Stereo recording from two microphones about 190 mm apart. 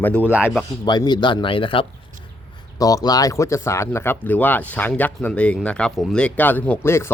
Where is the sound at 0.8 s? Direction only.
20° left (ahead or behind).